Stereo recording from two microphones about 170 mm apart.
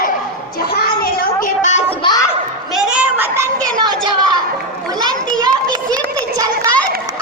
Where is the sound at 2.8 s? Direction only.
10° right (ahead or behind); by 4.4 s 25° right (ahead or behind).